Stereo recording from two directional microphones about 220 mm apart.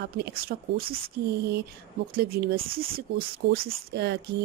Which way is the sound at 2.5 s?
25° right (ahead or behind).